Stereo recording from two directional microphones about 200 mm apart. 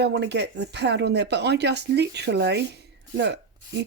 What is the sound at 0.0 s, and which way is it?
Speech, 60° right (ahead or behind).